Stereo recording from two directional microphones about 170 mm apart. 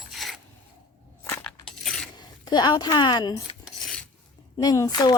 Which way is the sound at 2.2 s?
25° left (ahead or behind).